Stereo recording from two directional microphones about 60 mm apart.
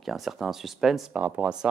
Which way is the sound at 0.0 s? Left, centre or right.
Centre.